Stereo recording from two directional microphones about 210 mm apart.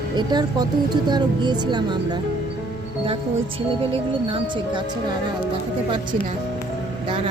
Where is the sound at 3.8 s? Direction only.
25° right (ahead or behind).